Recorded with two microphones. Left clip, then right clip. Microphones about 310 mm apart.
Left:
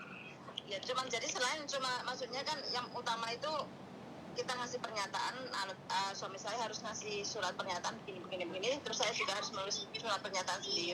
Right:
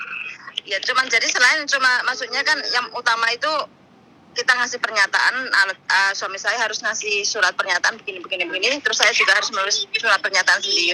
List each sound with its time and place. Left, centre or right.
0.5 s speech: centre